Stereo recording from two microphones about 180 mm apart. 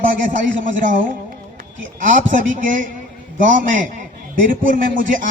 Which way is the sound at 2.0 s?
45° right (ahead or behind).